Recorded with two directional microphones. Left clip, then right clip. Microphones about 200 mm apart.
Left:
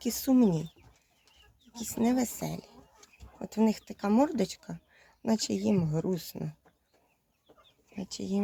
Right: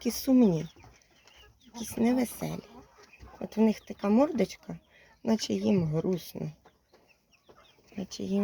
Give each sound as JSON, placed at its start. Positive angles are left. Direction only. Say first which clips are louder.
{"t": 0.0, "sound": "speech", "louder": "right 2 dB", "side_deg": 5}
{"t": 1.8, "sound": "speech", "louder": "right 1 dB", "side_deg": 10}
{"t": 7.9, "sound": "speech", "louder": "right 2 dB", "side_deg": 5}